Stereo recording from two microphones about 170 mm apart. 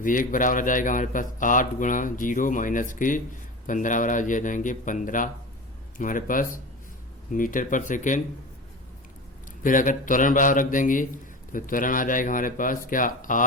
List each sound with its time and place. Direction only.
0.0 s a man's voice: 50° left (ahead or behind)
9.6 s a man's voice: 50° left (ahead or behind)